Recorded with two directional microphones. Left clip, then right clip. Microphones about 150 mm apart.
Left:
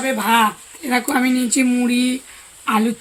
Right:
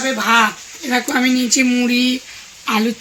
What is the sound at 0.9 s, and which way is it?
Speech, 15° left (ahead or behind).